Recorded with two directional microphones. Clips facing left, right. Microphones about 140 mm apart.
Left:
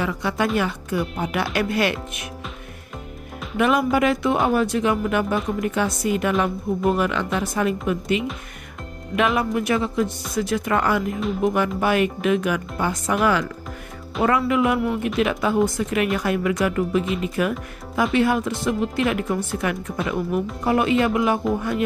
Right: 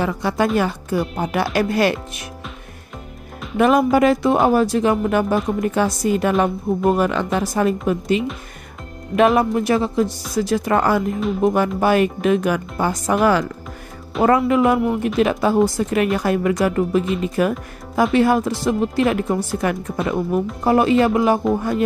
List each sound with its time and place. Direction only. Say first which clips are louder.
0.0 s speech: right 4 dB; 35° right (ahead or behind)
3.5 s speech: right 4 dB; 40° right (ahead or behind)